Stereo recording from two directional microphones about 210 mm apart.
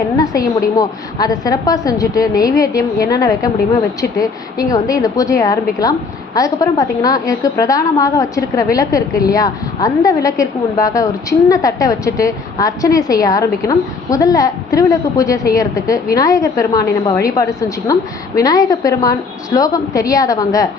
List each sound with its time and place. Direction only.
0.2 s a woman's voice: 15° left (ahead or behind)